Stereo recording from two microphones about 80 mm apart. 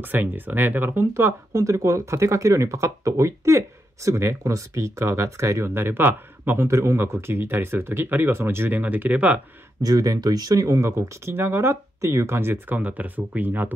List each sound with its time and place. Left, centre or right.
0.0 s speech: right
9.8 s speech: right